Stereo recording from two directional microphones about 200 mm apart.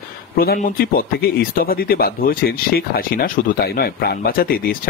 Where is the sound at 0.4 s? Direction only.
50° left (ahead or behind).